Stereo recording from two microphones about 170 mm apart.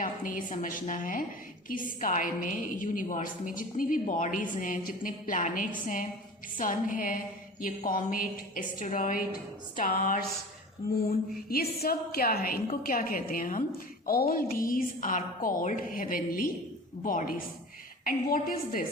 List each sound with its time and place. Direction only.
0.0 s a woman's voice: 55° left (ahead or behind)